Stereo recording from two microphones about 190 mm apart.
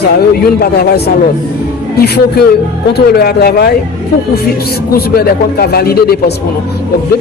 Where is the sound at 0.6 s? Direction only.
55° left (ahead or behind).